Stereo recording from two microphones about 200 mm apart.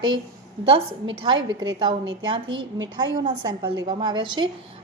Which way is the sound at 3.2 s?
20° right (ahead or behind).